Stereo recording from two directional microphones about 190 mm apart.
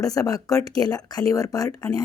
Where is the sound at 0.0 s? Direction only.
20° left (ahead or behind).